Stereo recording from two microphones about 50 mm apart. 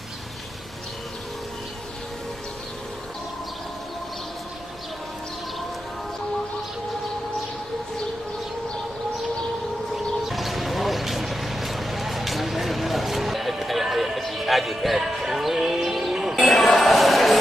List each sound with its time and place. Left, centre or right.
9.9 s vehicle: centre